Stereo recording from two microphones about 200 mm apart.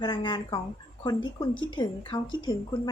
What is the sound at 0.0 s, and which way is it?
A woman's voice, 25° left (ahead or behind).